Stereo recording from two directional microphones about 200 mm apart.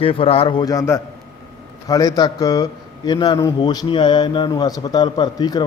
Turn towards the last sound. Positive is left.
turn(degrees=20)  # may be behind; listen again after turning